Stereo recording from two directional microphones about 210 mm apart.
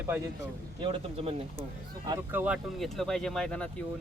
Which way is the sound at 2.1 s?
10° right (ahead or behind).